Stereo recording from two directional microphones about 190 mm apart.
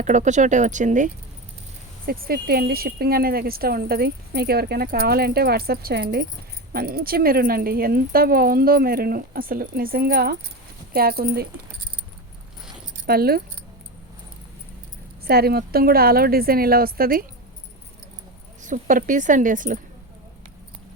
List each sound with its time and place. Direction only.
0.0 s speech: 40° right (ahead or behind)
13.1 s speech: 55° right (ahead or behind)
15.2 s speech: 55° right (ahead or behind)
18.6 s speech: 45° right (ahead or behind)